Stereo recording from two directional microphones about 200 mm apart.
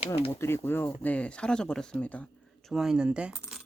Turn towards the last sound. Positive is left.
turn(degrees=-5)  # may be behind; listen again after turning